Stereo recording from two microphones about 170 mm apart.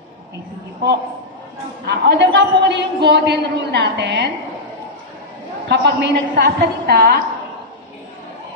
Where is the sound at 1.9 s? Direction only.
90° right.